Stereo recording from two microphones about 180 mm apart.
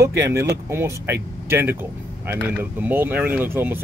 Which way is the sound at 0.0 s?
15° right (ahead or behind).